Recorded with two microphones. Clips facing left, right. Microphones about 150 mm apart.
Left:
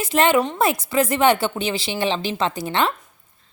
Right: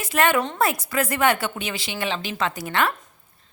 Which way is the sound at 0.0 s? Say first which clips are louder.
Left 3 dB; 25° left (ahead or behind).